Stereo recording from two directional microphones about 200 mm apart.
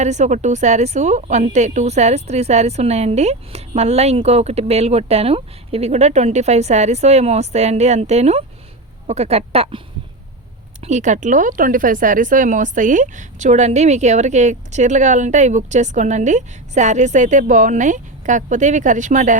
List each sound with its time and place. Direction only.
0.0 s a woman's voice: 35° right (ahead or behind)
10.8 s a woman's voice: 35° right (ahead or behind)